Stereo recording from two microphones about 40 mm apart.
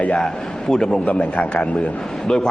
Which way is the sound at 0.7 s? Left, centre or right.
Centre.